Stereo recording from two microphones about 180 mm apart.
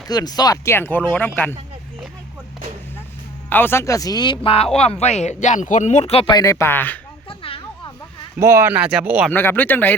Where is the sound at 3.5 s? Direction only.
10° left (ahead or behind); by 6.3 s 35° left (ahead or behind).